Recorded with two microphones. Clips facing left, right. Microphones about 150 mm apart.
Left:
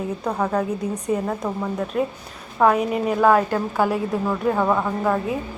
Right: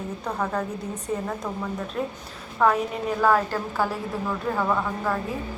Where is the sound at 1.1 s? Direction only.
5° left (ahead or behind).